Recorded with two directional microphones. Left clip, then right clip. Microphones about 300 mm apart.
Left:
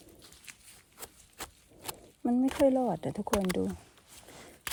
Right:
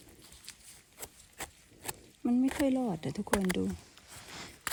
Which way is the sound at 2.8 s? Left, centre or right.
Centre.